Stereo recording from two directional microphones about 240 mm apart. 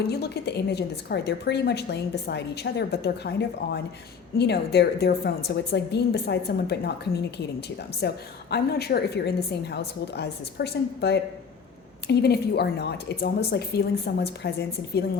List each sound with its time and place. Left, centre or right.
0.1 s a woman's voice: left